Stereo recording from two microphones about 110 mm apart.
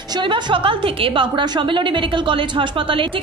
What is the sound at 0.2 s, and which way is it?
A woman's voice, 50° right (ahead or behind).